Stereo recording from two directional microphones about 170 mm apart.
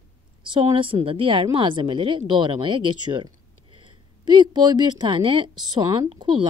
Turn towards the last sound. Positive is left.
turn(degrees=-25)  # may be behind; listen again after turning